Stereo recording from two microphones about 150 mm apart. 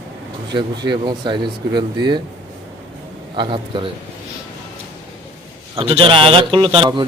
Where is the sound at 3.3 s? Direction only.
35° right (ahead or behind).